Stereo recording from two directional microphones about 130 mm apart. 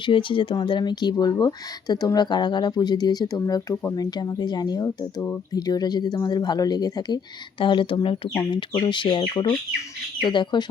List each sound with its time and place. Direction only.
0.0 s speech: 40° left (ahead or behind)